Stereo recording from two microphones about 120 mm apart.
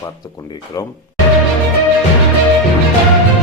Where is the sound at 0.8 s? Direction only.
30° left (ahead or behind).